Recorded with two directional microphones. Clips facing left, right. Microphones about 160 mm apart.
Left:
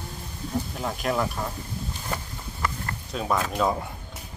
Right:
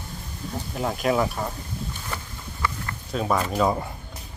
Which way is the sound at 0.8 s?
Centre (ahead or behind).